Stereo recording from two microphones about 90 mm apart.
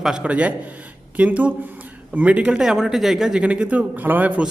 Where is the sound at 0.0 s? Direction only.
10° right (ahead or behind).